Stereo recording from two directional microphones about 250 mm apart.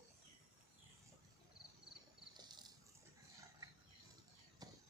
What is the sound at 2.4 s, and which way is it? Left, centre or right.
Bird, centre.